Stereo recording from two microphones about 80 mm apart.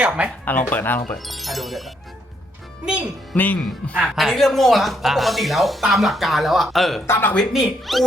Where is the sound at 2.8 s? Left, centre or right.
Centre.